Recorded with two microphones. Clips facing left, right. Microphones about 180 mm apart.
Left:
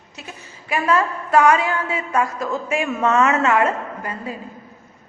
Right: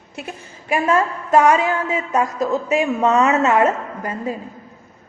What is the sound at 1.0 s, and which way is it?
Speech, 20° right (ahead or behind).